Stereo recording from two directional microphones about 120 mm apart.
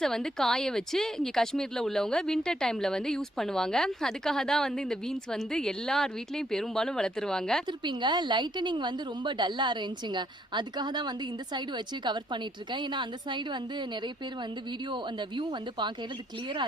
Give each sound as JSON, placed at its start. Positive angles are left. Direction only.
{"t": 0.0, "sound": "speech", "side_deg": 5}
{"t": 7.7, "sound": "a woman's voice", "side_deg": -40}
{"t": 14.8, "sound": "a woman's voice", "side_deg": -40}